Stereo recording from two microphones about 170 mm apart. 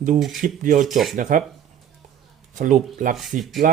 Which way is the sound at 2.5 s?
50° right (ahead or behind).